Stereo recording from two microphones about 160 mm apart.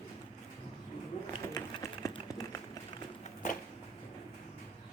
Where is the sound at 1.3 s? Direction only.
20° left (ahead or behind).